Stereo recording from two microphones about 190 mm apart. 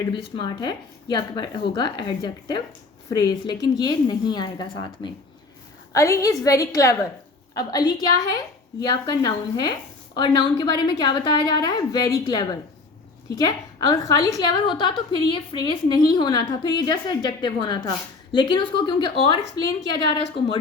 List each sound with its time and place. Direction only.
0.1 s a woman's voice: 25° left (ahead or behind)